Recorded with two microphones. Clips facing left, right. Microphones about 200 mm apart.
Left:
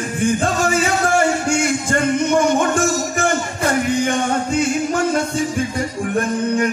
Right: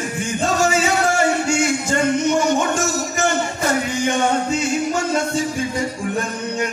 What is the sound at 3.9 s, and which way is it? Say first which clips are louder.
Music: left 1 dB; 55° left (ahead or behind).